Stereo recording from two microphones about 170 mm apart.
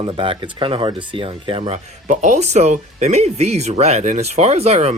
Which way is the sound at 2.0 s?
45° right (ahead or behind).